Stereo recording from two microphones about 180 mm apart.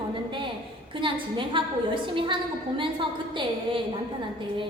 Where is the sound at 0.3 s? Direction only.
25° right (ahead or behind).